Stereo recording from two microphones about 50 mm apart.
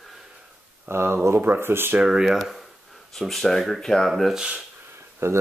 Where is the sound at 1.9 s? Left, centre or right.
Centre.